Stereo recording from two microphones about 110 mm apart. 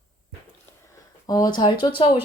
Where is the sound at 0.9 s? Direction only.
35° left (ahead or behind); by 2.2 s 50° left (ahead or behind).